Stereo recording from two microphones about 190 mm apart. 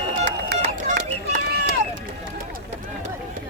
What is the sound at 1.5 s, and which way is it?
Run, 60° right (ahead or behind).